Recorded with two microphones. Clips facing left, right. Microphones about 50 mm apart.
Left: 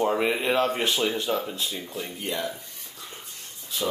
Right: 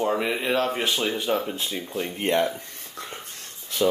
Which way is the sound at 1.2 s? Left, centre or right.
Right.